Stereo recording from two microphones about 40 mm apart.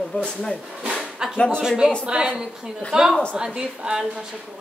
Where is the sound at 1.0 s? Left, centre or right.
Centre.